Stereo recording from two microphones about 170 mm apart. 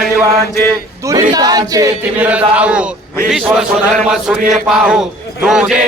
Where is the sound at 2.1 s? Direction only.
10° right (ahead or behind).